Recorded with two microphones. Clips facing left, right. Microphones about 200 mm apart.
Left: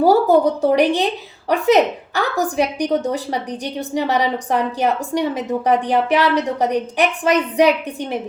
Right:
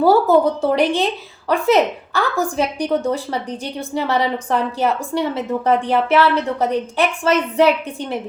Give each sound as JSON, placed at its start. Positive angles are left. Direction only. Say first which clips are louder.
{"t": 0.0, "sound": "a woman's voice", "louder": "even", "side_deg": 15}